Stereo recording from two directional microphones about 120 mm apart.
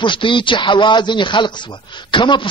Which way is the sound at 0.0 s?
45° left (ahead or behind).